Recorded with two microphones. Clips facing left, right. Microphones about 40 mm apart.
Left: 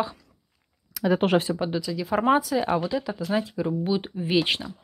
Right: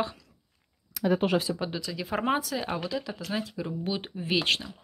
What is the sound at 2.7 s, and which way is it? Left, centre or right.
Speech, centre.